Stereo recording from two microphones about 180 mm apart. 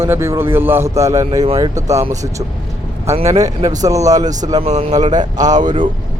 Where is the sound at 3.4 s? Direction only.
20° right (ahead or behind).